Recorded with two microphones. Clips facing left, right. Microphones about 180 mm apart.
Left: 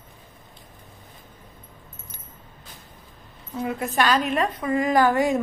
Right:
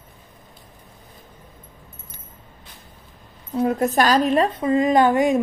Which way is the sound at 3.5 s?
40° right (ahead or behind).